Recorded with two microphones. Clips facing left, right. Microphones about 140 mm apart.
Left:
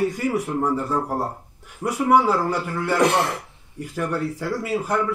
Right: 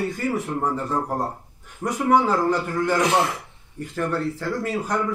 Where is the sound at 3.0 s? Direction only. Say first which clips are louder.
Left 5 dB; 55° left (ahead or behind).